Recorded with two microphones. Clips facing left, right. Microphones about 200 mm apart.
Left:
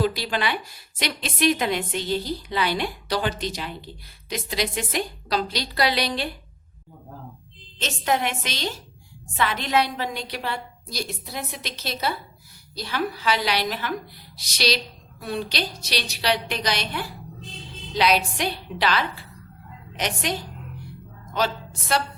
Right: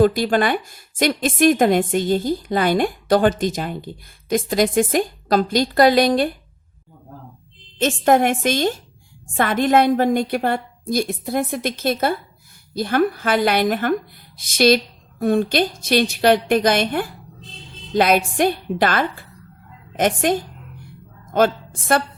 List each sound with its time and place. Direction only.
0.0 s a woman's voice: 50° right (ahead or behind)
7.8 s a woman's voice: 50° right (ahead or behind)